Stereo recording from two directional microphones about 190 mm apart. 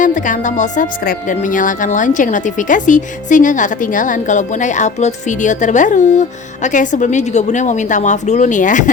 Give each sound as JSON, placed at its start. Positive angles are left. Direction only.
{"t": 0.0, "sound": "a woman's voice", "side_deg": 40}